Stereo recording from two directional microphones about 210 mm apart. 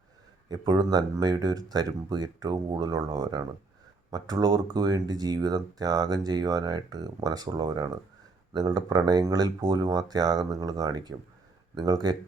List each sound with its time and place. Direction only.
0.4 s speech: 20° right (ahead or behind)